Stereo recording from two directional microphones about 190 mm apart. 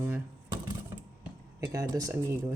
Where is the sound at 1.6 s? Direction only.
20° right (ahead or behind).